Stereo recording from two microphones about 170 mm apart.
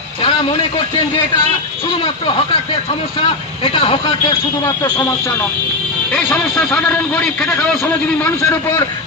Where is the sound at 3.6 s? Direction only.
30° left (ahead or behind).